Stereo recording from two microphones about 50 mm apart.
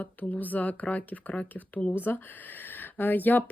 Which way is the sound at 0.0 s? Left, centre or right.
Left.